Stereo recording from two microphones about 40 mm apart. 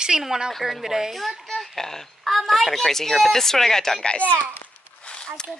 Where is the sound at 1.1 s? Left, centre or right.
Centre.